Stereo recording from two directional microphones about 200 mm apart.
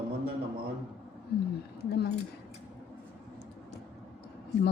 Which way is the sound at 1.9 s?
55° left (ahead or behind).